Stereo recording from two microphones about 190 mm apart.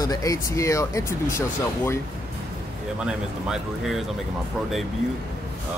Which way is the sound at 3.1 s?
5° right (ahead or behind).